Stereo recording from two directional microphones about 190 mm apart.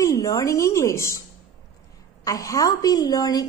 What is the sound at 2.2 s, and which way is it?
A woman's voice, 20° left (ahead or behind).